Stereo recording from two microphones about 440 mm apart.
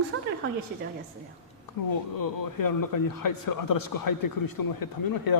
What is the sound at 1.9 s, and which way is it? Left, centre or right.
Speech, left.